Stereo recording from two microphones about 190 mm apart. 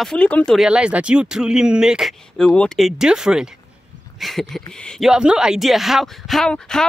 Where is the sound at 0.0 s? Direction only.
5° left (ahead or behind).